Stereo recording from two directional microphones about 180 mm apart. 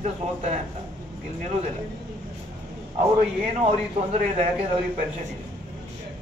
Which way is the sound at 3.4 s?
40° right (ahead or behind).